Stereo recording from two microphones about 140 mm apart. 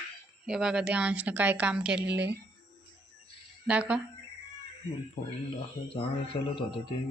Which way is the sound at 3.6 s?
10° right (ahead or behind).